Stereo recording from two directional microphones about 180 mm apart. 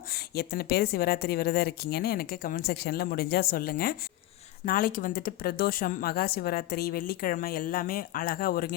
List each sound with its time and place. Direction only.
0.1 s a woman's voice: 60° left (ahead or behind)